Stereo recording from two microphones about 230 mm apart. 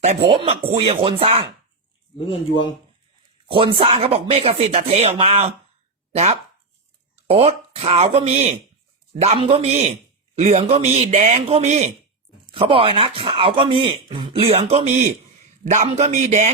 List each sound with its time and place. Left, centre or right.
0.0 s speech: right
3.5 s speech: right
7.3 s speech: right